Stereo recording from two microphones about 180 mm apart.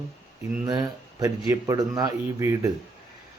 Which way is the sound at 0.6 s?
20° right (ahead or behind).